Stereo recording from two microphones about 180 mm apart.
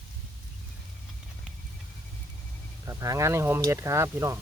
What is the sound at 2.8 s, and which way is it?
Speech, 20° right (ahead or behind).